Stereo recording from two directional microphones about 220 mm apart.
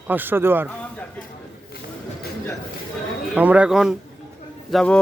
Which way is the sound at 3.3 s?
5° right (ahead or behind).